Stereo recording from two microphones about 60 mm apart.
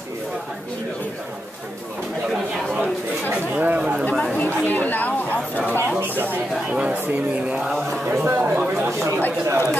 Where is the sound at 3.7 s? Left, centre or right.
Centre.